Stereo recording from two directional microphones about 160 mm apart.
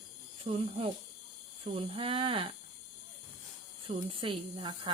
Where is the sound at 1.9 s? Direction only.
35° right (ahead or behind).